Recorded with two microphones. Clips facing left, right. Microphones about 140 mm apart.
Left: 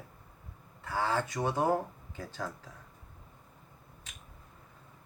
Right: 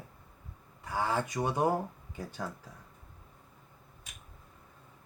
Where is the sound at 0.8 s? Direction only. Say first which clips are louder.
Even; 15° right (ahead or behind).